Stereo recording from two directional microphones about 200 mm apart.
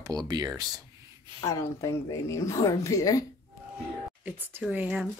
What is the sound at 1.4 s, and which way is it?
A woman's voice, 15° left (ahead or behind).